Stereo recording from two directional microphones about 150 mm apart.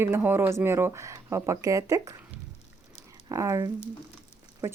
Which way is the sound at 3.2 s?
20° right (ahead or behind).